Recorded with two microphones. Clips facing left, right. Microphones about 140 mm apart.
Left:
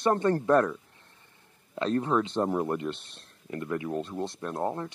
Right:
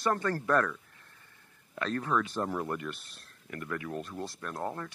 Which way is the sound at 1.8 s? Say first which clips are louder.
Left 5 dB; 25° left (ahead or behind).